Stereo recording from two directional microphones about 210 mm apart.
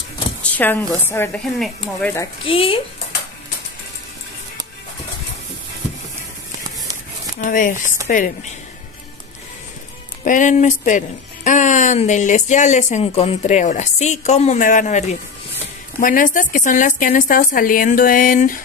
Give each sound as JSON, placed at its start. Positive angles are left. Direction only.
{"t": 0.4, "sound": "a woman's voice", "side_deg": 10}
{"t": 2.4, "sound": "speech", "side_deg": 25}
{"t": 7.3, "sound": "speech", "side_deg": 40}
{"t": 10.2, "sound": "speech", "side_deg": 35}